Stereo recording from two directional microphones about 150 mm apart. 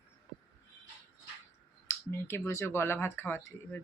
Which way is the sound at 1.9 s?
15° left (ahead or behind).